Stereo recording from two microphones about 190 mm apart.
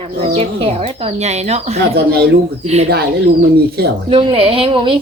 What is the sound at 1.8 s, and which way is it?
Speech, 55° right (ahead or behind).